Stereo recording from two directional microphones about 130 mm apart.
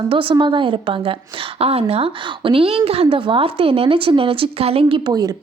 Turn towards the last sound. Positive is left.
turn(degrees=-30)  # may be behind; listen again after turning